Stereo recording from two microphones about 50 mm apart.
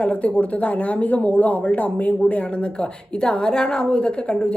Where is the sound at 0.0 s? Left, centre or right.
Left.